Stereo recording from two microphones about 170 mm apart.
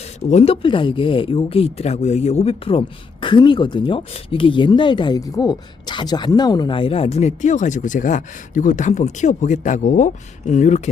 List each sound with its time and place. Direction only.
0.2 s speech: 40° left (ahead or behind)